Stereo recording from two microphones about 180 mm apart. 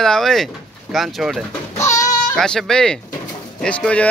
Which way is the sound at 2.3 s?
5° left (ahead or behind).